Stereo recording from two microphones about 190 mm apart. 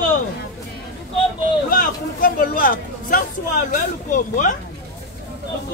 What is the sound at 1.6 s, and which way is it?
Speech, 45° left (ahead or behind).